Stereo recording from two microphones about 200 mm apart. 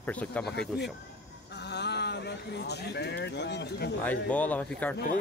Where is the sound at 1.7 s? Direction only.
55° left (ahead or behind).